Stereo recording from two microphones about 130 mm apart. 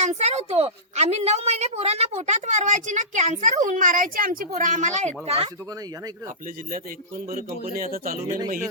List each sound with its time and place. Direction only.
0.0 s a woman's voice: 60° right (ahead or behind)
7.3 s speech: 90° right